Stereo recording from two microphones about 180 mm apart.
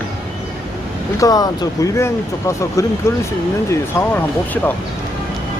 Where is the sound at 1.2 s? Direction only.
20° left (ahead or behind).